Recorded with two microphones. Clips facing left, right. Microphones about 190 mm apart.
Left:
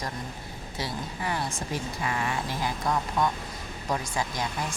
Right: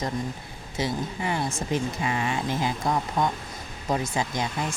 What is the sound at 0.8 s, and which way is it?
Speech, 20° right (ahead or behind).